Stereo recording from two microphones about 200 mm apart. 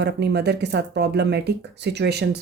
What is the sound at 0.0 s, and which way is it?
A woman's voice, 55° right (ahead or behind).